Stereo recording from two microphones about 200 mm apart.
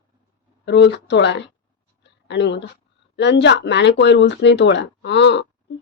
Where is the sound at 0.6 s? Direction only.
60° left (ahead or behind).